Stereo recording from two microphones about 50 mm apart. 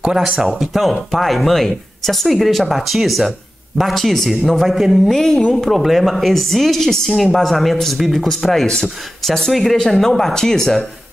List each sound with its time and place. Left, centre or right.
0.4 s speech: centre
8.6 s speech: centre
9.2 s speech: centre